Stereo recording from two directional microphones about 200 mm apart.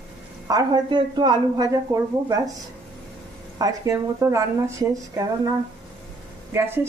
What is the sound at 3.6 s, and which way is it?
Speech, 15° right (ahead or behind).